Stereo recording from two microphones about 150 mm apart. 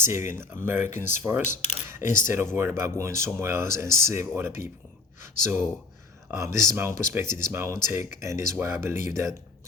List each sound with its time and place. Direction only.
0.0 s speech: 15° right (ahead or behind)
1.9 s camera: 15° right (ahead or behind)
2.2 s speech: 15° right (ahead or behind)